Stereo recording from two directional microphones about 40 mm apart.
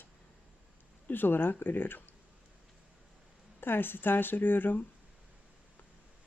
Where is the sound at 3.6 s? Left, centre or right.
Left.